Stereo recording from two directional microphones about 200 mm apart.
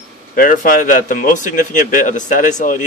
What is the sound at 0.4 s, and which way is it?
A man's voice, 40° left (ahead or behind).